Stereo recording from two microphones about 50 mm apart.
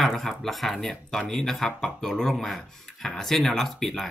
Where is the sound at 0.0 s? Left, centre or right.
Centre.